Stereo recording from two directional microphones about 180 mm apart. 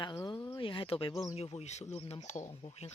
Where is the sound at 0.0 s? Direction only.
25° left (ahead or behind).